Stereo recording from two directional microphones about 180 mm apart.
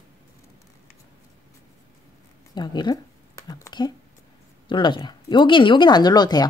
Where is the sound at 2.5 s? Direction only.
25° left (ahead or behind).